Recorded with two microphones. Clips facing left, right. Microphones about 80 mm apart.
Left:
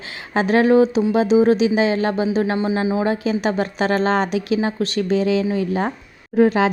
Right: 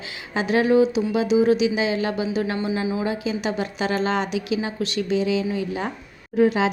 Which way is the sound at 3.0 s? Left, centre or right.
Left.